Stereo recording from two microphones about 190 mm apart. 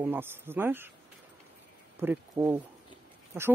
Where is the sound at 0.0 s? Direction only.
10° right (ahead or behind).